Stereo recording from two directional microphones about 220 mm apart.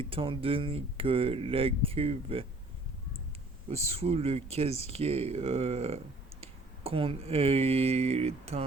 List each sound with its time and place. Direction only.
0.0 s speech: 25° right (ahead or behind)
3.7 s speech: 30° right (ahead or behind)